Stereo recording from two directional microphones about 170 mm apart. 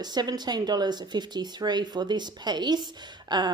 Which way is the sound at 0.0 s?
25° right (ahead or behind).